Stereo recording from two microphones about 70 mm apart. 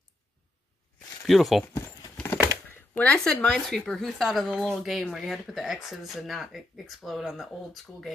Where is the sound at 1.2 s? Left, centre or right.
Centre.